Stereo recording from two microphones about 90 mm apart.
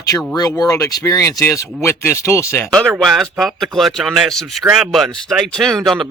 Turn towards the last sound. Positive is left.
turn(degrees=0)  # may be behind; listen again after turning